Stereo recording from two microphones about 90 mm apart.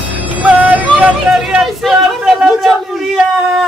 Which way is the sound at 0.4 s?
15° right (ahead or behind).